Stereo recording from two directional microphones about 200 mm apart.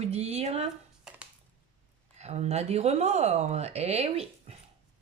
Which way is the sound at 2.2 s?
35° right (ahead or behind).